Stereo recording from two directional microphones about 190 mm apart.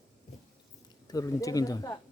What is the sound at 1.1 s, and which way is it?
Speech, 20° left (ahead or behind).